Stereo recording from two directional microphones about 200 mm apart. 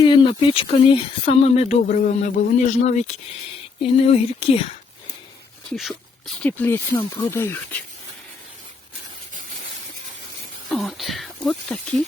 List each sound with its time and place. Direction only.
0.0 s speech: 25° left (ahead or behind)
5.7 s speech: centre (ahead or behind)
10.7 s speech: centre (ahead or behind)